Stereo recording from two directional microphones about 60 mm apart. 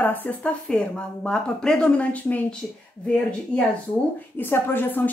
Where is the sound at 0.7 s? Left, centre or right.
Centre.